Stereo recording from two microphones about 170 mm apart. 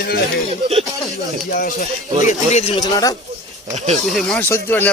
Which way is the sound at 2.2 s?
40° left (ahead or behind).